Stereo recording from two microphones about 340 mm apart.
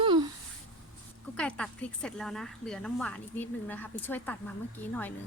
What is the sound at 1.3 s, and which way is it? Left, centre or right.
A woman's voice, centre.